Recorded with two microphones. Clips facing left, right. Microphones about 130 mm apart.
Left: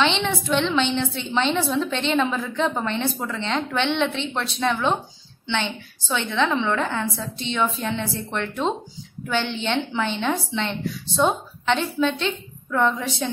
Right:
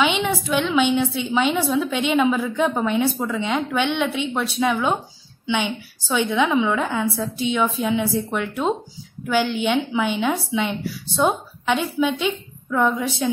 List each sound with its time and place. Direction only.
0.0 s a woman's voice: 10° right (ahead or behind)